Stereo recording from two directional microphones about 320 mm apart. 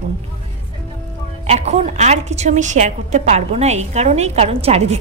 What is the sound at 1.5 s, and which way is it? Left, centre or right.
A woman's voice, right.